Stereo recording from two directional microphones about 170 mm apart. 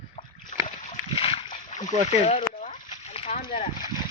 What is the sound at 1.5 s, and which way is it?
Speech, 45° left (ahead or behind).